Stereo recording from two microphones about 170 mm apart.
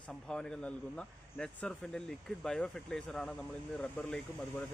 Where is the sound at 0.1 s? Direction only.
5° left (ahead or behind).